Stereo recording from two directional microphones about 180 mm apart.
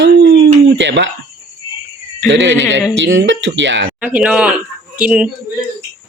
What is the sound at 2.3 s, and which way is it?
Speech, 85° right.